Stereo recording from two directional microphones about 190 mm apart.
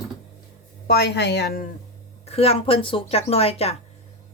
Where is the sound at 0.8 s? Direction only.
60° left (ahead or behind).